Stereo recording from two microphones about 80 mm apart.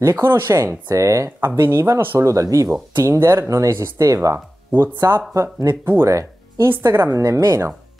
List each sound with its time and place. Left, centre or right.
0.0 s speech: right
1.5 s speech: right
2.7 s speech: right